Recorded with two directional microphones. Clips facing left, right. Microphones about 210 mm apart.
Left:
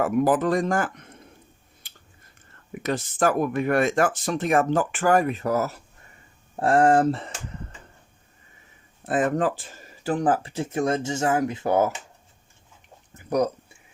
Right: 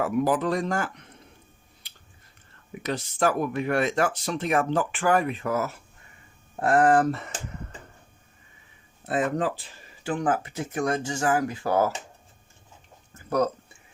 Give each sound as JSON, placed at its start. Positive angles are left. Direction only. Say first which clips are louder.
{"t": 0.0, "sound": "speech", "louder": "left 3 dB", "side_deg": 50}
{"t": 1.8, "sound": "scissors", "louder": "left 2 dB", "side_deg": 50}
{"t": 2.8, "sound": "speech", "louder": "left 2 dB", "side_deg": 50}
{"t": 6.6, "sound": "speech", "louder": "left 2 dB", "side_deg": 30}
{"t": 9.0, "sound": "speech", "louder": "left 3 dB", "side_deg": 50}
{"t": 13.1, "sound": "a sound", "louder": "left 1 dB", "side_deg": 15}